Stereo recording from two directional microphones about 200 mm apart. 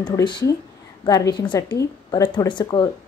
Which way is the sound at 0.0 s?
25° left (ahead or behind).